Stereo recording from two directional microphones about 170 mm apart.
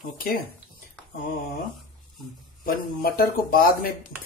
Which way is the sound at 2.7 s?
60° left (ahead or behind).